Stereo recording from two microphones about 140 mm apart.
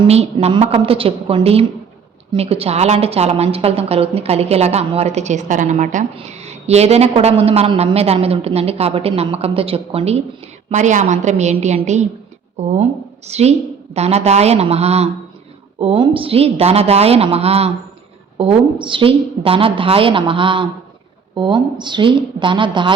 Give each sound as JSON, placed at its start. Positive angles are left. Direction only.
{"t": 0.1, "sound": "a woman's voice", "side_deg": -50}